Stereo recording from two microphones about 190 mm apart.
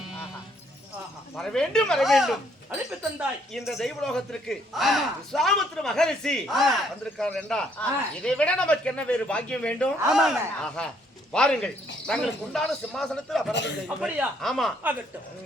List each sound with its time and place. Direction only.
0.0 s sheep: centre (ahead or behind)
1.4 s speech: 5° left (ahead or behind)
13.5 s a man's voice: 65° left (ahead or behind)
13.8 s speech: 5° right (ahead or behind)